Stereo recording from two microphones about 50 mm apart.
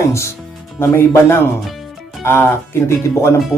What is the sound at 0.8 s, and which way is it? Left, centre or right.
Speech, left.